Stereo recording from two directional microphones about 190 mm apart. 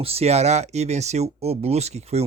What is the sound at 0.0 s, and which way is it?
Speech, 30° right (ahead or behind).